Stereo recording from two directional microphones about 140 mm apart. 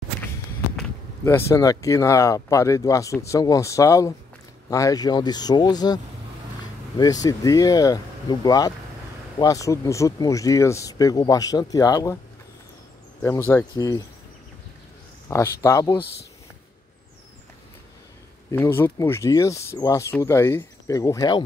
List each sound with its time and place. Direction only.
1.2 s speech: 20° left (ahead or behind)
7.0 s speech: 25° left (ahead or behind)
13.2 s speech: 15° left (ahead or behind)
15.2 s speech: 20° left (ahead or behind)
18.5 s speech: 15° left (ahead or behind)